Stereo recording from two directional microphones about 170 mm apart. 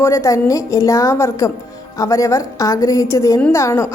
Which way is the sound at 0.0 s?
15° left (ahead or behind).